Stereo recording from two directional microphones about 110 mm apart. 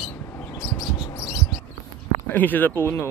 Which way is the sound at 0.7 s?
40° left (ahead or behind).